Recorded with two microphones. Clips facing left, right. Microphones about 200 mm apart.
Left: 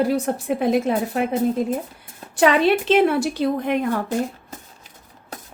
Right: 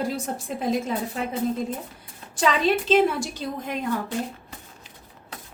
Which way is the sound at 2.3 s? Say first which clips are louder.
Left 5 dB; 65° left (ahead or behind).